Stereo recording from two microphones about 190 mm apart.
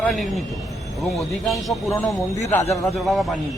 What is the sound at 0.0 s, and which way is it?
Speech, centre (ahead or behind).